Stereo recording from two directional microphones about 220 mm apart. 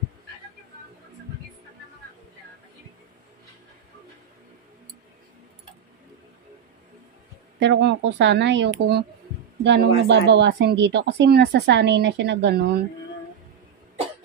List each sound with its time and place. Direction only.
7.5 s speech: 55° right (ahead or behind)